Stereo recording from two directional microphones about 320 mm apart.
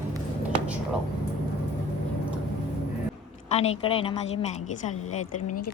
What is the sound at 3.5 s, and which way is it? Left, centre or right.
A woman's voice, centre.